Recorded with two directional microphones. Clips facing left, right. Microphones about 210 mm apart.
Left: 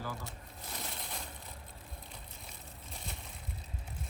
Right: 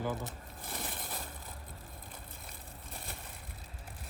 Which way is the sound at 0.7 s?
50° right (ahead or behind).